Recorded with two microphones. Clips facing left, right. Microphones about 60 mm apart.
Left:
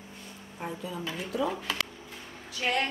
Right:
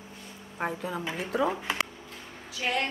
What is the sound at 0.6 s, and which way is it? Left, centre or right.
Speech, right.